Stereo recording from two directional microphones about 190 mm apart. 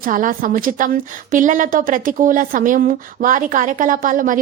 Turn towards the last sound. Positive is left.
turn(degrees=-45)  # may be behind; listen again after turning